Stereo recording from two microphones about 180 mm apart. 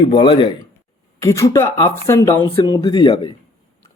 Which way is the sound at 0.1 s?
25° left (ahead or behind).